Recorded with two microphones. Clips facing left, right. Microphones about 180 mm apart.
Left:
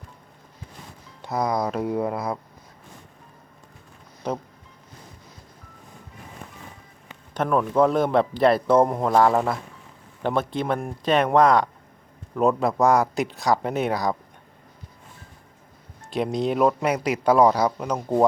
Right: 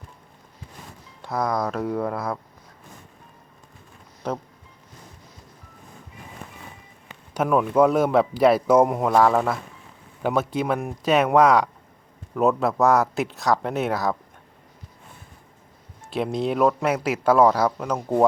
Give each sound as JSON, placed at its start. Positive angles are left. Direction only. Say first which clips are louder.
{"t": 1.2, "sound": "a man's voice", "louder": "even", "side_deg": 0}
{"t": 7.3, "sound": "speech", "louder": "right 2 dB", "side_deg": -5}
{"t": 9.1, "sound": "a man's voice", "louder": "even", "side_deg": 5}
{"t": 10.2, "sound": "a man's voice", "louder": "right 1 dB", "side_deg": -5}
{"t": 16.0, "sound": "a man's voice", "louder": "even", "side_deg": 0}